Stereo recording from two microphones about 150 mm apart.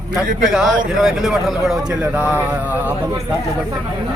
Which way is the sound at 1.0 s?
Centre (ahead or behind).